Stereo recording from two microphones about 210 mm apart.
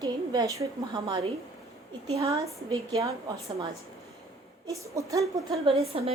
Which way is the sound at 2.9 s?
15° right (ahead or behind).